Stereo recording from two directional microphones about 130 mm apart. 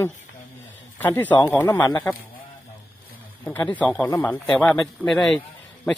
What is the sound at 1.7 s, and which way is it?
Speech, 30° left (ahead or behind).